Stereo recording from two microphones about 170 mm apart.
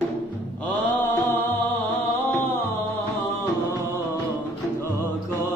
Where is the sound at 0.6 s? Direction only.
10° left (ahead or behind).